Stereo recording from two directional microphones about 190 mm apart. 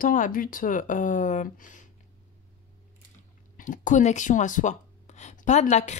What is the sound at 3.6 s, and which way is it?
Speech, 40° left (ahead or behind).